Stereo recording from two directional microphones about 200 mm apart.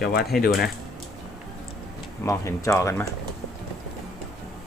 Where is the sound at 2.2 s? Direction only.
15° left (ahead or behind).